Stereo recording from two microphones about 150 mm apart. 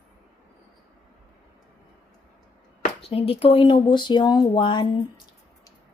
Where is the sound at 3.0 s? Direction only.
40° left (ahead or behind).